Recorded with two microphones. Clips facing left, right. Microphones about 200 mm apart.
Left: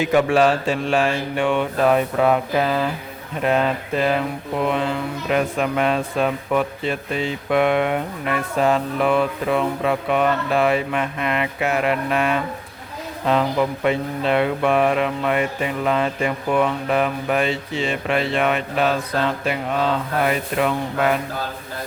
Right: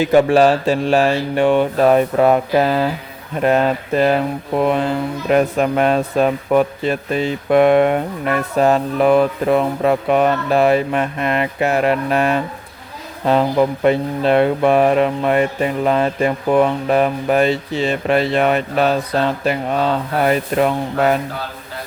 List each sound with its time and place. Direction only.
0.0 s speech: 35° right (ahead or behind)
5.3 s speech: 45° right (ahead or behind)